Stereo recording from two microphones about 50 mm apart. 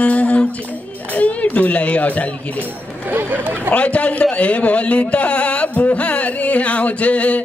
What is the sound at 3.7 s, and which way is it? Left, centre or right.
A man's voice, left.